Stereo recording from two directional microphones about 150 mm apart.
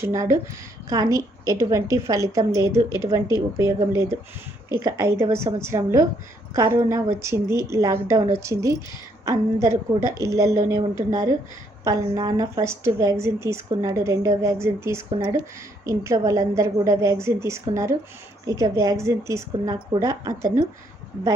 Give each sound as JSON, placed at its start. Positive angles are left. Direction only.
{"t": 0.0, "sound": "a woman's voice", "side_deg": -20}